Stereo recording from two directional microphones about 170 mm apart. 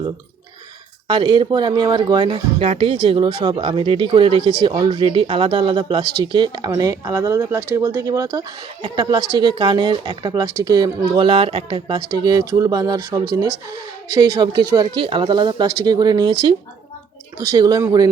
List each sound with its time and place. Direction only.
1.0 s speech: 25° right (ahead or behind)